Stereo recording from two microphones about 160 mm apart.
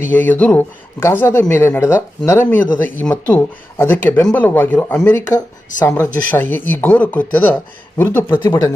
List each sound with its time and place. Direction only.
0.0 s speech: 10° left (ahead or behind)